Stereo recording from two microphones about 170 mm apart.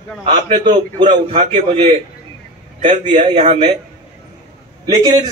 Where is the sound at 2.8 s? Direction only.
30° right (ahead or behind).